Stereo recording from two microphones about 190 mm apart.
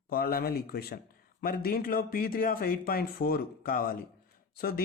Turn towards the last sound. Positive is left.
turn(degrees=50)  # may be behind; listen again after turning